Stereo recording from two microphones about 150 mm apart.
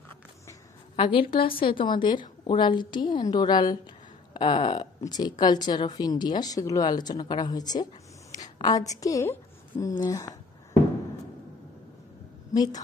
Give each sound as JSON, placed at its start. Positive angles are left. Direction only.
{"t": 0.9, "sound": "a woman's voice", "side_deg": 35}
{"t": 12.5, "sound": "a woman's voice", "side_deg": 25}